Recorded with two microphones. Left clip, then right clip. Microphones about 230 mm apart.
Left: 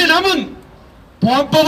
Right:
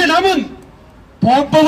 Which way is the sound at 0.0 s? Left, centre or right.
Left.